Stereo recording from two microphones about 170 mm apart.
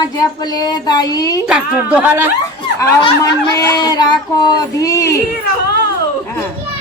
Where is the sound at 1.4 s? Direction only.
5° right (ahead or behind).